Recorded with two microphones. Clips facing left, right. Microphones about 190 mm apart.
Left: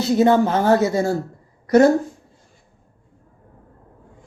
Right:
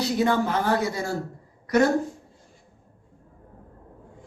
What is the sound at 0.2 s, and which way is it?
Speech, 25° left (ahead or behind).